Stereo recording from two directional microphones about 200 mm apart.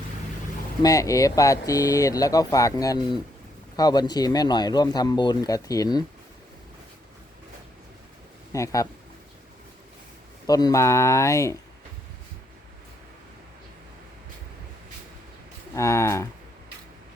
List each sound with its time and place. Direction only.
0.8 s speech: 15° left (ahead or behind)
8.5 s speech: 15° left (ahead or behind)
10.4 s speech: 20° left (ahead or behind)
15.7 s speech: 15° left (ahead or behind)